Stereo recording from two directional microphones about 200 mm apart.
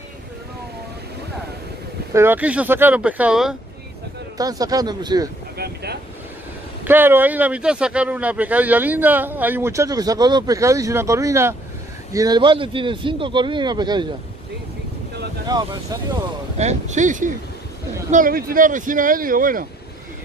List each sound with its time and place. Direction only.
2.1 s speech: 10° right (ahead or behind)
4.4 s a man's voice: 20° right (ahead or behind)
5.6 s speech: 55° right (ahead or behind)
6.8 s a man's voice: 10° right (ahead or behind)
15.4 s a man's voice: 20° right (ahead or behind)
16.5 s speech: 35° right (ahead or behind)